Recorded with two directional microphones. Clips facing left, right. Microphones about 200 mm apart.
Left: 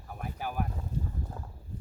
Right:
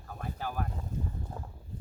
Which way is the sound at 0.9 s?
30° left (ahead or behind).